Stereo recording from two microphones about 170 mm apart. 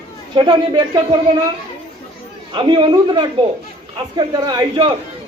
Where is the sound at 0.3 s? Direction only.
25° right (ahead or behind).